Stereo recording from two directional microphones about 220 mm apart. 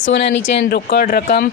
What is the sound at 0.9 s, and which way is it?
Speech, 40° left (ahead or behind).